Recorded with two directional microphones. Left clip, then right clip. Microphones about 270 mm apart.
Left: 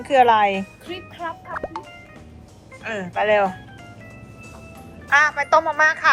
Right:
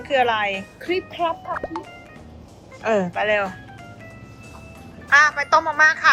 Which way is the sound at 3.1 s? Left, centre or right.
Centre.